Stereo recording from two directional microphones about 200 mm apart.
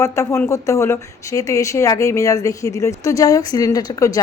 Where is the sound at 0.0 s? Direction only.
15° left (ahead or behind).